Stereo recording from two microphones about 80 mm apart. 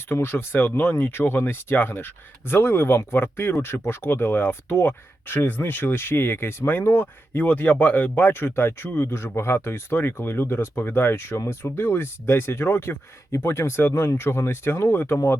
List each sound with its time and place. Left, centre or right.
0.1 s speech: left